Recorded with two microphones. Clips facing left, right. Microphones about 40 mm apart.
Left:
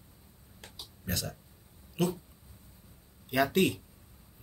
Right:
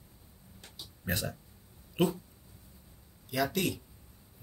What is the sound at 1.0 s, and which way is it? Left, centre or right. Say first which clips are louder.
Speech: right 2 dB; right.